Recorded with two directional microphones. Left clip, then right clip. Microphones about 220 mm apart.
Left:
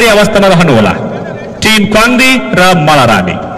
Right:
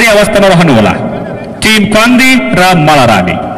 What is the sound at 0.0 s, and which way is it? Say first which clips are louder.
A man's voice: right 1 dB; 30° right (ahead or behind).